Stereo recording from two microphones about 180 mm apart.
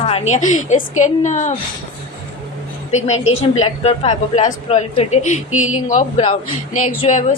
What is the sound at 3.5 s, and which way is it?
A woman's voice, 40° left (ahead or behind).